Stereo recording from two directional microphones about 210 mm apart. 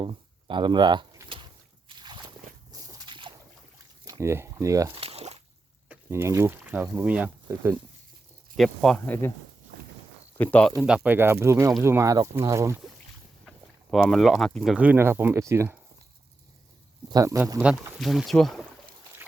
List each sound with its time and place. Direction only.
0.0 s a sound: 25° right (ahead or behind)
2.7 s walk: 20° right (ahead or behind)
4.0 s speech: 15° right (ahead or behind)
4.9 s a sound: 30° right (ahead or behind)
5.9 s speech: 10° right (ahead or behind)
8.5 s speech: centre (ahead or behind)
10.3 s speech: 10° left (ahead or behind); by 12.8 s 15° right (ahead or behind)
13.9 s speech: centre (ahead or behind)
17.1 s speech: 15° right (ahead or behind); by 18.6 s centre (ahead or behind)